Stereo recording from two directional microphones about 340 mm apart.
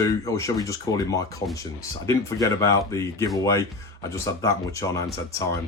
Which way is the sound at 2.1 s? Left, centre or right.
Centre.